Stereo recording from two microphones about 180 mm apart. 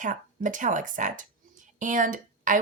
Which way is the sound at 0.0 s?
45° right (ahead or behind).